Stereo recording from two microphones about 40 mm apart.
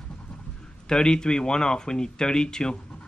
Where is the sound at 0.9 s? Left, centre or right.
Centre.